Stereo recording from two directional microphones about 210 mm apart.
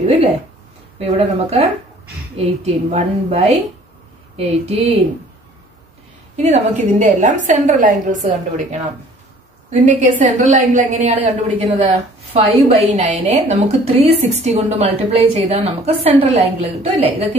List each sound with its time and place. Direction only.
0.9 s a woman's voice: 30° right (ahead or behind)
4.6 s speech: 30° right (ahead or behind)
6.3 s a woman's voice: 35° right (ahead or behind)